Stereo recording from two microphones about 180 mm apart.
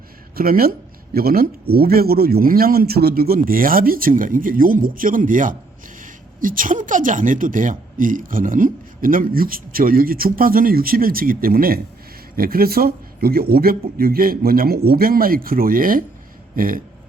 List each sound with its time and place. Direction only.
0.3 s a man's voice: 55° right (ahead or behind)